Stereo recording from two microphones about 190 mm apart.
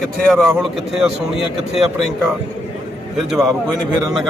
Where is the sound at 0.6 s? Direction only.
Centre (ahead or behind).